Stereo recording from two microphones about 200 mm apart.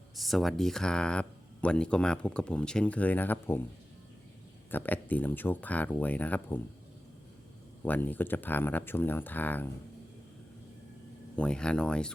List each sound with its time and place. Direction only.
0.2 s speech: centre (ahead or behind)
4.7 s speech: 10° left (ahead or behind)
7.9 s speech: 10° left (ahead or behind)
11.3 s speech: 5° left (ahead or behind)